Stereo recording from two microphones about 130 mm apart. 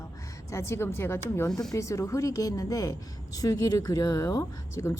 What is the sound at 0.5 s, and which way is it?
Speech, 20° left (ahead or behind).